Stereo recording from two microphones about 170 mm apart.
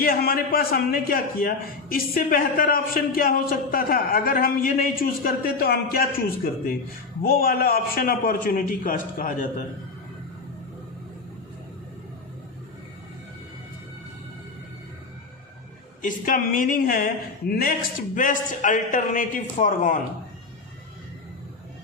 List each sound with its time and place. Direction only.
0.0 s a man's voice: 60° left (ahead or behind)
16.0 s speech: 50° left (ahead or behind)